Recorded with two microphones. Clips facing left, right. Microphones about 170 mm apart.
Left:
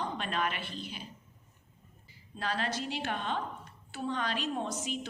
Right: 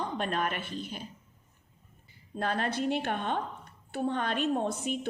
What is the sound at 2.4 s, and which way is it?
A woman's voice, 55° right (ahead or behind).